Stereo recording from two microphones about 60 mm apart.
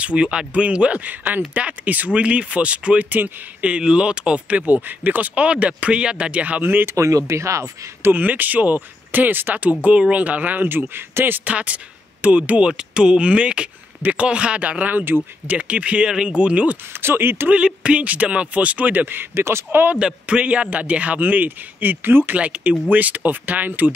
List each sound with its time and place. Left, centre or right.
0.0 s speech: centre; by 7.0 s right
7.0 s speech: right
8.1 s speech: right
11.4 s speech: right
15.5 s speech: right
17.0 s speech: right
17.5 s speech: centre; by 19.9 s right
20.0 s speech: centre; by 22.4 s right
22.4 s speech: right